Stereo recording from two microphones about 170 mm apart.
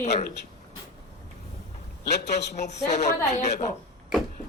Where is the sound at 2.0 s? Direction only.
75° left (ahead or behind).